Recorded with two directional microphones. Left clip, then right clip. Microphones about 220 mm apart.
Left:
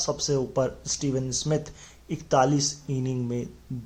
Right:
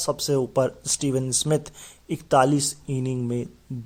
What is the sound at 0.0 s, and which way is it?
Speech, 40° right (ahead or behind).